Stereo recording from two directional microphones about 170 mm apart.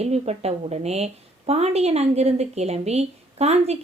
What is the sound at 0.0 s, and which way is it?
A woman's voice, 40° right (ahead or behind).